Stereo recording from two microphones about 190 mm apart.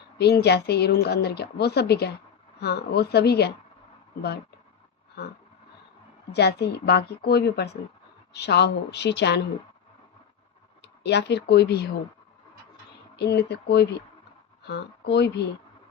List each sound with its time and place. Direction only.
0.2 s speech: 60° left (ahead or behind)
6.3 s speech: 60° left (ahead or behind)
11.0 s speech: 65° left (ahead or behind)
13.1 s speech: 60° left (ahead or behind)